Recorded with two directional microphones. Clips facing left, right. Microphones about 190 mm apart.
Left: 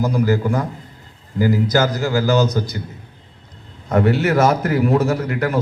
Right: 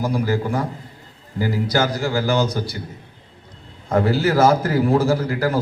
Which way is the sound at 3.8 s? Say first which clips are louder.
Left 2 dB; 30° right (ahead or behind).